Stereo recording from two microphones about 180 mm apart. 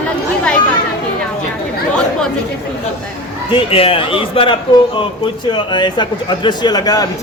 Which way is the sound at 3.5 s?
30° left (ahead or behind).